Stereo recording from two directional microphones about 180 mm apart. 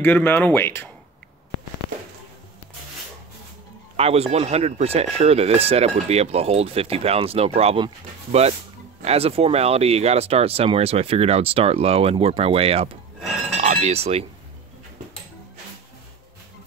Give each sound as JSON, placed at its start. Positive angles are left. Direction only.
{"t": 0.0, "sound": "speech", "side_deg": 10}
{"t": 3.9, "sound": "speech", "side_deg": -35}